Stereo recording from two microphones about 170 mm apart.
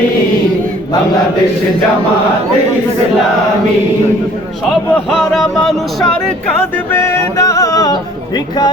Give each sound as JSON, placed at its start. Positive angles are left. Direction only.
{"t": 5.1, "sound": "music", "side_deg": 0}
{"t": 6.9, "sound": "music", "side_deg": 15}